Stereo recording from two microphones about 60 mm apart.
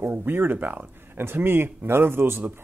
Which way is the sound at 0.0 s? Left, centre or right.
Right.